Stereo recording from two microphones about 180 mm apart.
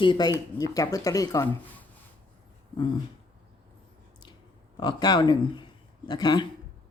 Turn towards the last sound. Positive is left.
turn(degrees=25)  # may be behind; listen again after turning